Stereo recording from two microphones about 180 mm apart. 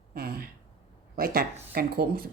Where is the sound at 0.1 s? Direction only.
55° right (ahead or behind).